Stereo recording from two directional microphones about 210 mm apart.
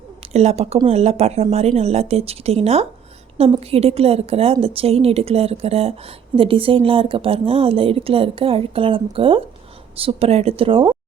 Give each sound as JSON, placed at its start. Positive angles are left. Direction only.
{"t": 0.3, "sound": "a woman's voice", "side_deg": -30}